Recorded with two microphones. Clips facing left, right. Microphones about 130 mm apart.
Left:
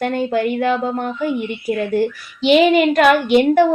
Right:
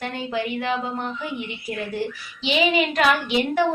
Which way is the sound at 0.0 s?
50° left (ahead or behind).